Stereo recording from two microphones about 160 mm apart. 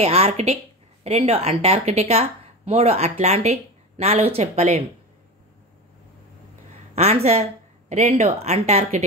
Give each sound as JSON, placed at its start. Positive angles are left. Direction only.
{"t": 0.0, "sound": "speech", "side_deg": -40}
{"t": 7.0, "sound": "a woman's voice", "side_deg": -40}